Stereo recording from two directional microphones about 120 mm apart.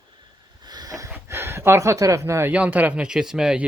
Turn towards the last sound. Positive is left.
turn(degrees=-5)  # may be behind; listen again after turning